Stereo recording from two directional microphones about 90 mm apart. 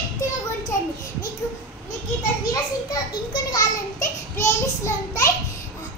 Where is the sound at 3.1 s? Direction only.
45° left (ahead or behind).